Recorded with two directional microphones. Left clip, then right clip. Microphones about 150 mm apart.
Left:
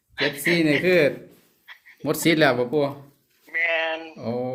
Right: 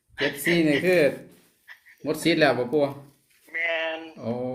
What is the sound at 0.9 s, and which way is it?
Speech, 50° left (ahead or behind).